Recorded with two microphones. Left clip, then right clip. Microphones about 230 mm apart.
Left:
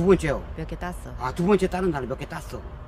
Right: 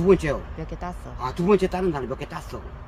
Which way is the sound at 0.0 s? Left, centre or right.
Centre.